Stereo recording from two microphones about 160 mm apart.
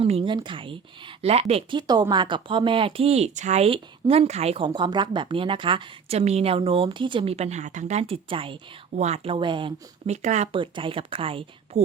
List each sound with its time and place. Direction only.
0.0 s speech: 35° right (ahead or behind)
1.9 s speech: 25° right (ahead or behind)
10.1 s speech: 45° right (ahead or behind)
10.5 s speech: 30° right (ahead or behind)